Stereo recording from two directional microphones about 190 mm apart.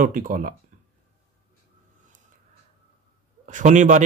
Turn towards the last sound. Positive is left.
turn(degrees=-40)  # may be behind; listen again after turning